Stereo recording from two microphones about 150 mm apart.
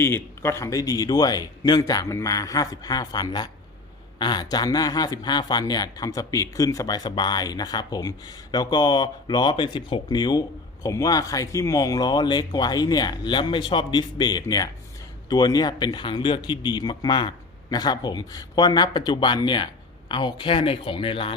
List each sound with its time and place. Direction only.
0.0 s a man's voice: 15° left (ahead or behind); by 21.3 s 35° left (ahead or behind)